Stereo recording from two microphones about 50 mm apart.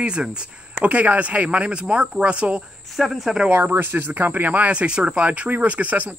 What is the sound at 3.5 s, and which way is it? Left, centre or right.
Speech, right.